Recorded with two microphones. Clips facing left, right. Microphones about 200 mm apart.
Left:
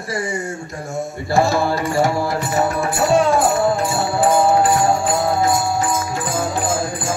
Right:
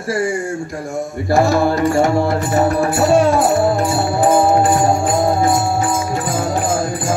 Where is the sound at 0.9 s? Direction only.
15° right (ahead or behind).